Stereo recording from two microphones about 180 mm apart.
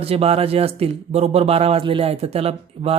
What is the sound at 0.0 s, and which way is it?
Speech, 35° right (ahead or behind).